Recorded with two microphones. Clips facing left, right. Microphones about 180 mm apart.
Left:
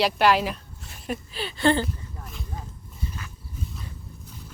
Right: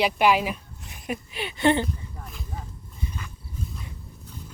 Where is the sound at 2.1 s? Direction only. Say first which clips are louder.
Even; centre (ahead or behind).